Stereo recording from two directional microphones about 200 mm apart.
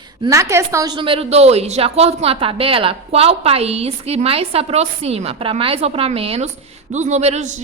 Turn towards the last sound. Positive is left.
turn(degrees=-35)  # may be behind; listen again after turning